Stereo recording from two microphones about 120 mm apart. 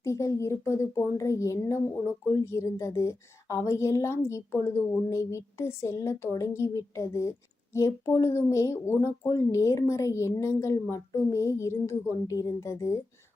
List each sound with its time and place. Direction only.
0.0 s speech: 25° left (ahead or behind)